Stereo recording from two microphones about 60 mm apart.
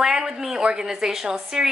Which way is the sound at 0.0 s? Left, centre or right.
Centre.